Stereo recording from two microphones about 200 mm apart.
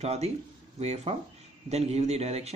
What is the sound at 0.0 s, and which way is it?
Speech, 30° right (ahead or behind).